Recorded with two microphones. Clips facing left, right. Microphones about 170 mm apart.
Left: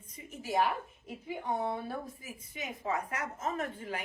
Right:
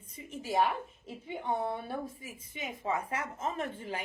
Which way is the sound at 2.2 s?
25° right (ahead or behind).